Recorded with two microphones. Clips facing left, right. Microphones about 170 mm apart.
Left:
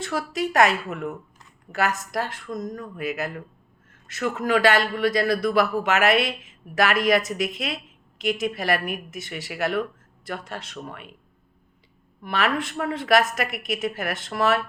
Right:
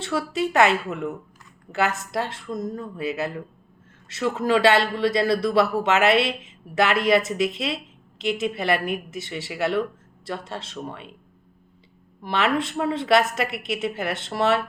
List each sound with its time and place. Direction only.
0.0 s a man's voice: 30° right (ahead or behind)
12.2 s a man's voice: 25° right (ahead or behind)